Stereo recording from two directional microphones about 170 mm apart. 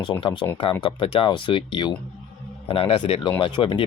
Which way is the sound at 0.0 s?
30° left (ahead or behind).